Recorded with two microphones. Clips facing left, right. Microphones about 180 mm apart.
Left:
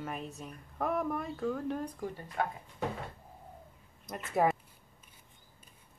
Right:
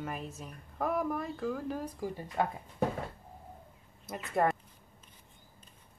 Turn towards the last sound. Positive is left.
turn(degrees=0)  # may be behind; listen again after turning